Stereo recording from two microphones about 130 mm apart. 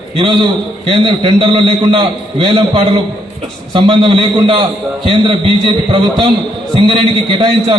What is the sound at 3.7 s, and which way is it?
A man's voice, 40° right (ahead or behind).